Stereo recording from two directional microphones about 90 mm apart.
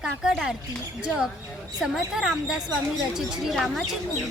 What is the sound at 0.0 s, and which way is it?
Speech, 10° right (ahead or behind).